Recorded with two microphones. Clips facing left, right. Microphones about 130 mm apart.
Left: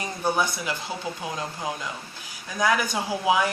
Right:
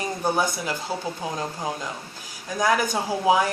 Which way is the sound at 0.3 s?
40° right (ahead or behind).